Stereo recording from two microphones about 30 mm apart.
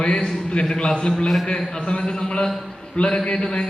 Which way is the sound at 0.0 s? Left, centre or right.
Left.